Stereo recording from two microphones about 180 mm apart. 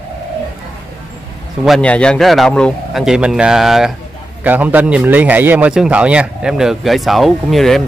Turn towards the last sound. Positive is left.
turn(degrees=0)  # may be behind; listen again after turning